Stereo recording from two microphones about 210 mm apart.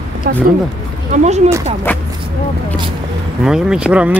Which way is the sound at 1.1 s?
35° right (ahead or behind).